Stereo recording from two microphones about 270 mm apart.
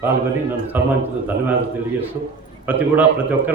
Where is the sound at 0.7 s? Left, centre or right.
Centre.